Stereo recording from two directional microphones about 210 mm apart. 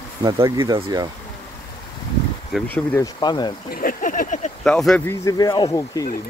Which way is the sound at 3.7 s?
40° left (ahead or behind).